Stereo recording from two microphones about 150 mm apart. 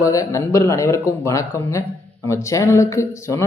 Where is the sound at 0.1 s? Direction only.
20° left (ahead or behind).